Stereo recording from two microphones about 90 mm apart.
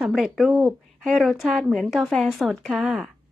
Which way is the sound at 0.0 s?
5° right (ahead or behind).